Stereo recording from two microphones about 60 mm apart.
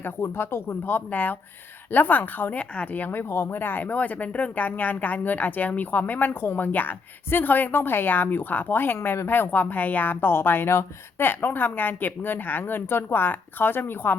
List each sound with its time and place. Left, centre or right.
0.0 s speech: left